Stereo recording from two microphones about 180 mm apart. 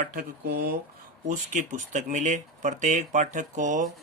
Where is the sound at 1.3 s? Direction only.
45° right (ahead or behind).